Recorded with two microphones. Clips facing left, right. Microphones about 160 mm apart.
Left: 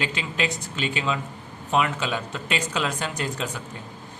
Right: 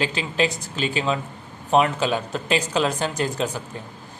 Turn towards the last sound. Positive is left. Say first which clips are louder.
# right 5 dB
turn(degrees=-35)  # may be behind; listen again after turning